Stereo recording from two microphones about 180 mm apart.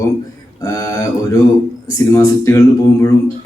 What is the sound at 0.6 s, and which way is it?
A man's voice, 15° left (ahead or behind).